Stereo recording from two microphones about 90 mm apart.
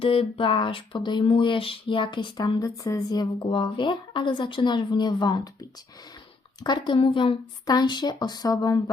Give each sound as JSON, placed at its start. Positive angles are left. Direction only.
{"t": 0.0, "sound": "a sound", "side_deg": 85}
{"t": 1.0, "sound": "a woman's voice", "side_deg": 65}
{"t": 2.8, "sound": "speech", "side_deg": 40}
{"t": 3.5, "sound": "a woman's voice", "side_deg": 65}
{"t": 6.6, "sound": "a woman's voice", "side_deg": 55}
{"t": 7.7, "sound": "speech", "side_deg": 55}